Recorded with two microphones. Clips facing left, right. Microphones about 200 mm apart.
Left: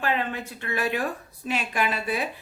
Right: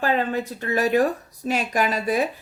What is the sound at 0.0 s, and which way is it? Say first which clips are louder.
Speech: right 5 dB; 40° right (ahead or behind).